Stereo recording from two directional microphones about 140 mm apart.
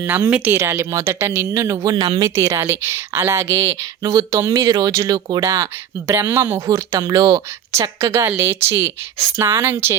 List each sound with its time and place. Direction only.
0.3 s a woman's voice: 10° right (ahead or behind)